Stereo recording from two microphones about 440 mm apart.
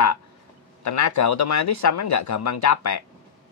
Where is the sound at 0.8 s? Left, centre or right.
Left.